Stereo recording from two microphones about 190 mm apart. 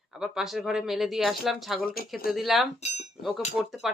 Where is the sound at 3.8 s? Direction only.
Centre (ahead or behind).